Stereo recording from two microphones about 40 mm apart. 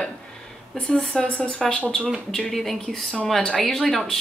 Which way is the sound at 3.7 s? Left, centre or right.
Centre.